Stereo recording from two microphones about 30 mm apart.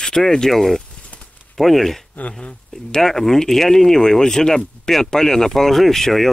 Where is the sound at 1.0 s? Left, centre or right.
Left.